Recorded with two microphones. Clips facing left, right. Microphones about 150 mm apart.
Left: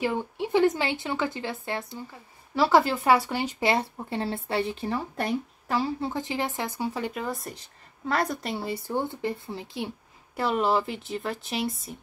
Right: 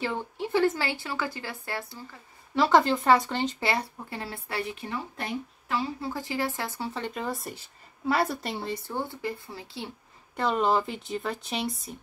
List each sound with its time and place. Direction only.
0.0 s speech: 15° left (ahead or behind)
2.5 s speech: 5° left (ahead or behind); by 5.9 s 40° left (ahead or behind)
5.9 s speech: 25° left (ahead or behind)
7.2 s speech: centre (ahead or behind); by 9.8 s 20° left (ahead or behind)
10.3 s speech: 5° left (ahead or behind)